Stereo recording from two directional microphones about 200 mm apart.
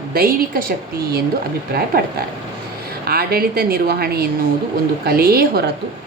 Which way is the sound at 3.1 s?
50° right (ahead or behind).